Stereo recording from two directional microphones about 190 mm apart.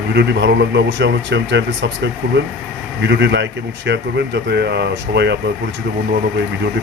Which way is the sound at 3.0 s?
70° right (ahead or behind).